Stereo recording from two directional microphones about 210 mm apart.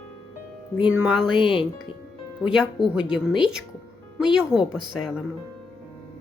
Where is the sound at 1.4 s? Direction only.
25° left (ahead or behind).